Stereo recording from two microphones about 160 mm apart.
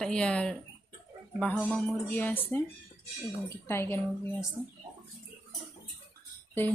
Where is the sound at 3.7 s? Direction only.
15° left (ahead or behind).